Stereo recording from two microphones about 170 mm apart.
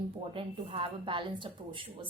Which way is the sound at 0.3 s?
30° right (ahead or behind).